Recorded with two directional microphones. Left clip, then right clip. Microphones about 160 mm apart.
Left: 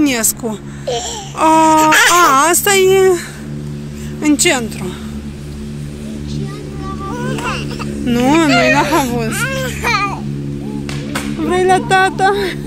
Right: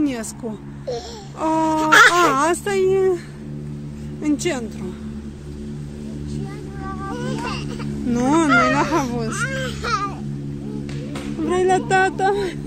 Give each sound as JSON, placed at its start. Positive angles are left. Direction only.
{"t": 0.0, "sound": "speech", "side_deg": 0}
{"t": 4.2, "sound": "speech", "side_deg": -5}
{"t": 8.1, "sound": "speech", "side_deg": -15}
{"t": 9.5, "sound": "babbling", "side_deg": -50}
{"t": 11.4, "sound": "speech", "side_deg": -25}